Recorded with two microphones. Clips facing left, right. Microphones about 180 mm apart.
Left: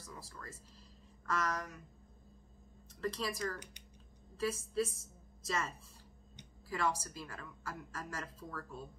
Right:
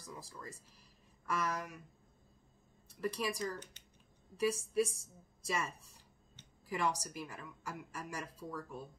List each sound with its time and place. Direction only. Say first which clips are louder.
0.1 s a woman's voice: right 2 dB; 15° right (ahead or behind)
2.9 s a woman's voice: right 1 dB; 10° right (ahead or behind)
6.7 s a woman's voice: even; 15° right (ahead or behind)